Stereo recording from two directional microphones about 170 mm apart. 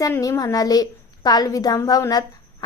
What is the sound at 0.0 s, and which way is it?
A woman's voice, 20° left (ahead or behind).